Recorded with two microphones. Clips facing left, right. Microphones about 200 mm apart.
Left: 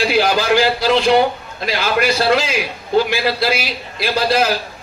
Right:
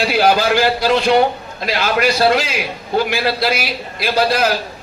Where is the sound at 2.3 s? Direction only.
60° right (ahead or behind).